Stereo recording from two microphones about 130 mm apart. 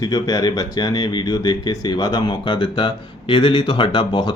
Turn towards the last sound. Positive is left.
turn(degrees=35)  # may be behind; listen again after turning